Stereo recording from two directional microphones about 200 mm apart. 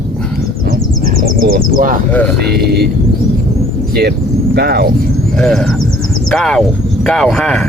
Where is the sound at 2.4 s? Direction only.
55° right (ahead or behind).